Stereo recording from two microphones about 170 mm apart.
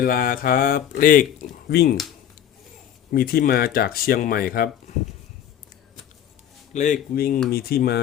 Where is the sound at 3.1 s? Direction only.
60° left (ahead or behind).